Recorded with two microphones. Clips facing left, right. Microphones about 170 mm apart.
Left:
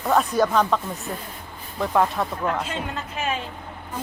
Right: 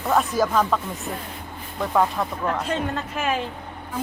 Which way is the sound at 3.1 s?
55° right (ahead or behind).